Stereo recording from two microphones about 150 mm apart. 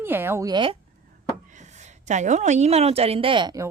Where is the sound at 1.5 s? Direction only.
50° right (ahead or behind).